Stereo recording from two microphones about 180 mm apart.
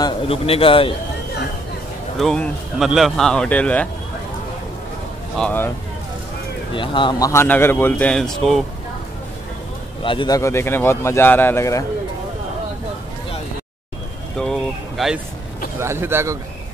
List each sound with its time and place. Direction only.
0.0 s a man's voice: 30° left (ahead or behind)
2.1 s speech: 5° left (ahead or behind)
5.4 s a man's voice: 10° left (ahead or behind)
6.7 s a man's voice: 25° left (ahead or behind); by 8.6 s centre (ahead or behind)
10.0 s a man's voice: 25° left (ahead or behind)
14.4 s a sound: centre (ahead or behind)
15.8 s a man's voice: 15° right (ahead or behind)